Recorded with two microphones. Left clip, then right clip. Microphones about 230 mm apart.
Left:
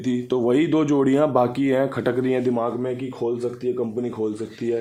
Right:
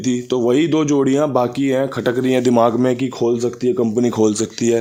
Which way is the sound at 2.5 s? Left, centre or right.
Right.